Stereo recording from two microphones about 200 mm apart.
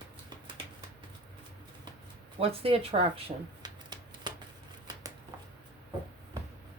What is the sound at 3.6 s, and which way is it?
Shuffling cards, 20° right (ahead or behind).